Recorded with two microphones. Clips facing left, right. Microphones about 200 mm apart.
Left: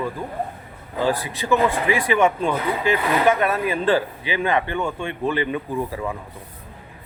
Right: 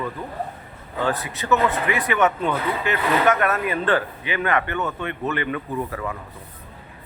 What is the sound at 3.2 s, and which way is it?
Speech, 10° left (ahead or behind).